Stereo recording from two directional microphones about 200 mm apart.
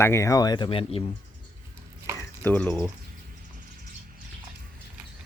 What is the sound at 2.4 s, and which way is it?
Speech, 5° left (ahead or behind).